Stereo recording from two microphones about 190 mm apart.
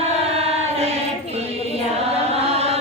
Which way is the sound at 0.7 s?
30° right (ahead or behind).